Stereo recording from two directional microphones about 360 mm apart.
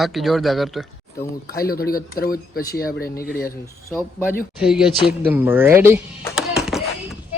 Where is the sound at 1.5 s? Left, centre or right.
Left.